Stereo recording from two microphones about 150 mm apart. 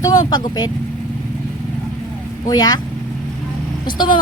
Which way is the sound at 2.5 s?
25° left (ahead or behind).